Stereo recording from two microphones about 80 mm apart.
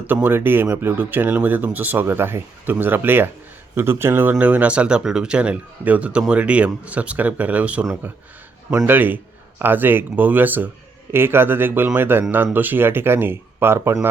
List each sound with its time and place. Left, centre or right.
0.1 s speech: right
8.9 s speech: right